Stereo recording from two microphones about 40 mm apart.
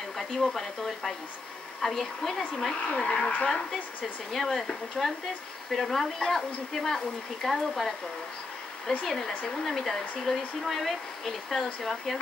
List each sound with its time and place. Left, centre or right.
0.2 s speech: centre
2.9 s speech: left
4.3 s speech: centre
9.0 s speech: centre